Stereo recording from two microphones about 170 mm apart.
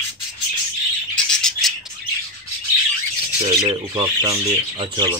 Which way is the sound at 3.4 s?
30° right (ahead or behind).